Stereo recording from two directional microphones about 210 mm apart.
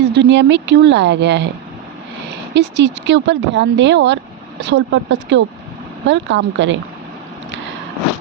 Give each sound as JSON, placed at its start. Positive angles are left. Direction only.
{"t": 0.0, "sound": "speech", "side_deg": -55}
{"t": 2.5, "sound": "speech", "side_deg": -55}